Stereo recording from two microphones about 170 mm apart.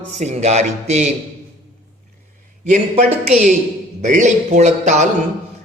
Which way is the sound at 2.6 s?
40° right (ahead or behind).